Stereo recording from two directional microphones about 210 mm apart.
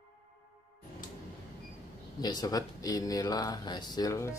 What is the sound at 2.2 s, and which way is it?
Speech, 20° left (ahead or behind).